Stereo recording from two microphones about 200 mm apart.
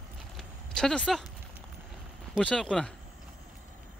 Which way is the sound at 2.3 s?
5° left (ahead or behind).